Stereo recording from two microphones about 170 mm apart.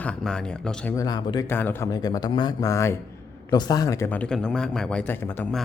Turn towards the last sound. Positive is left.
turn(degrees=10)  # may be behind; listen again after turning